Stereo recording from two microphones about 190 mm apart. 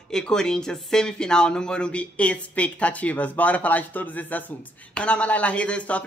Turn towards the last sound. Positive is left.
turn(degrees=5)  # may be behind; listen again after turning